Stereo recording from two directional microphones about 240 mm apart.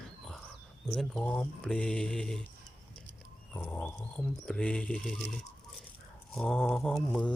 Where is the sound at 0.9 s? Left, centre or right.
Centre.